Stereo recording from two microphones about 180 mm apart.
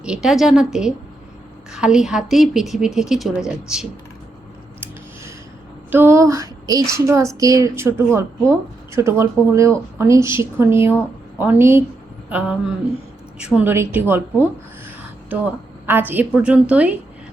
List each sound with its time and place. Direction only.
0.0 s speech: 5° right (ahead or behind)
5.9 s a sound: 15° right (ahead or behind)
6.9 s speech: 15° right (ahead or behind)
15.9 s speech: 10° right (ahead or behind)